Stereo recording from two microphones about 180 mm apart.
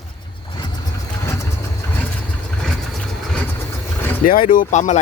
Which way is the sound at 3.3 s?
5° left (ahead or behind).